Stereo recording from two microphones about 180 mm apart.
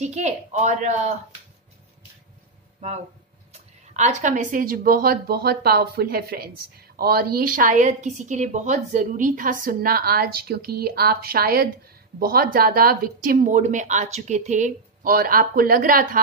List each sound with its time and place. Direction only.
0.0 s a woman's voice: 40° right (ahead or behind)
3.5 s speech: 40° right (ahead or behind)